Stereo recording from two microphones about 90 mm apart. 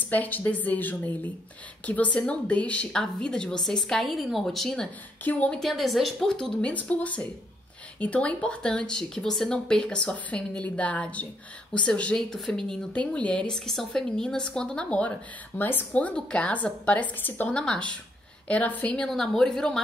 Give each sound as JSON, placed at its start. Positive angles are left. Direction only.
{"t": 0.1, "sound": "a woman's voice", "side_deg": 20}
{"t": 5.2, "sound": "speech", "side_deg": 15}
{"t": 5.6, "sound": "speech", "side_deg": 0}